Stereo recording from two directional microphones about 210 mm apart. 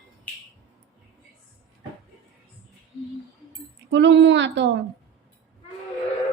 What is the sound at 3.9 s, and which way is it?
Speech, 60° right (ahead or behind).